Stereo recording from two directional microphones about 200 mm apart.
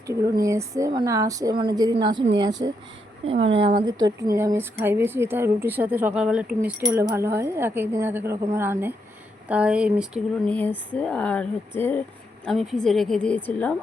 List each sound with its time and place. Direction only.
0.1 s a woman's voice: 15° right (ahead or behind)
10.4 s a woman's voice: 5° left (ahead or behind)